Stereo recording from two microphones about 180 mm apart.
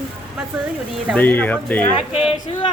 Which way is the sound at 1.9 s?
30° left (ahead or behind).